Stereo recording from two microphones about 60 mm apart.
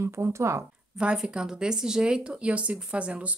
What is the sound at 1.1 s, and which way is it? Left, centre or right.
Speech, centre.